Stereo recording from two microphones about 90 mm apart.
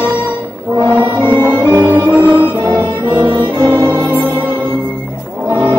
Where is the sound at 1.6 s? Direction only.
45° right (ahead or behind).